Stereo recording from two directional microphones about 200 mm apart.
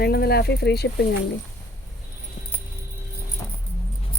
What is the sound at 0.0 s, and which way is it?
Speech, 55° left (ahead or behind).